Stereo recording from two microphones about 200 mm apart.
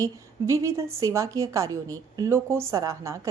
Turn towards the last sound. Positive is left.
turn(degrees=-15)  # may be behind; listen again after turning